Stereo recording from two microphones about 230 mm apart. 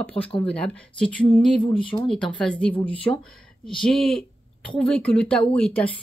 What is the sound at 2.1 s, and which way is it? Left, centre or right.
Speech, centre.